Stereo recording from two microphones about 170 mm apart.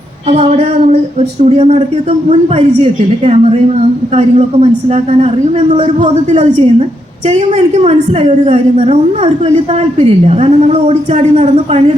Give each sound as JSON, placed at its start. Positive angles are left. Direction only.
{"t": 0.3, "sound": "speech", "side_deg": -40}